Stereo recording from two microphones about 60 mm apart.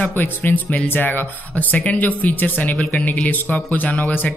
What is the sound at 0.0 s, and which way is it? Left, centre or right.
Speech, left.